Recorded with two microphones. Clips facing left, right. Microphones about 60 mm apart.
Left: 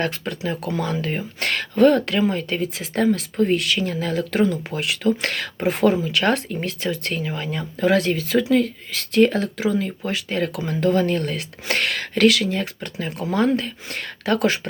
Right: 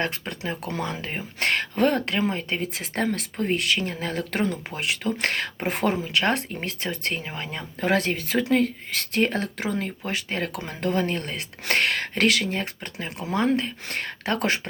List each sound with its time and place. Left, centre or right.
0.0 s speech: right
3.4 s speech: right